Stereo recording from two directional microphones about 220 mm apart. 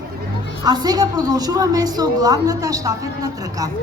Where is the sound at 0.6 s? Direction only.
15° right (ahead or behind).